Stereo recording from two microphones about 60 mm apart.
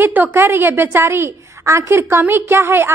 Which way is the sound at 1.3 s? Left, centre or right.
Right.